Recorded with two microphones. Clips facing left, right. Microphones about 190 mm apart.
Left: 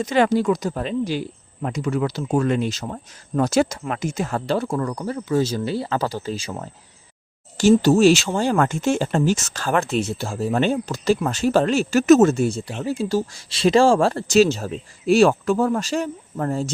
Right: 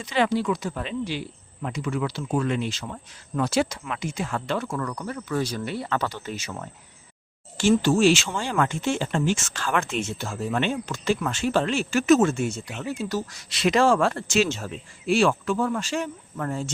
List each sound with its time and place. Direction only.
0.0 s speech: 45° left (ahead or behind)